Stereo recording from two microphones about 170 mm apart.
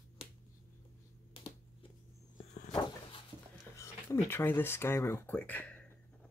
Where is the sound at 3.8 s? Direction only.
15° left (ahead or behind).